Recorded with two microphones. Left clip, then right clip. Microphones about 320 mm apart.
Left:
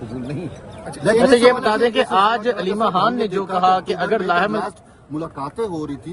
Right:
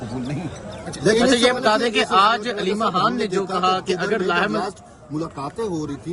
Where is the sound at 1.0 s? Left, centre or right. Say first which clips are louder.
Left 4 dB; centre.